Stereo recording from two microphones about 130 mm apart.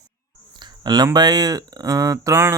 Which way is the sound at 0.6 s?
30° right (ahead or behind).